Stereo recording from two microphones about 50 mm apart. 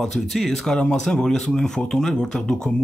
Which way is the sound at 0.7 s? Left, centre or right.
Centre.